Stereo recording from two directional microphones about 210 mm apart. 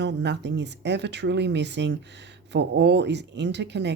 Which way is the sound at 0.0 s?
55° right (ahead or behind).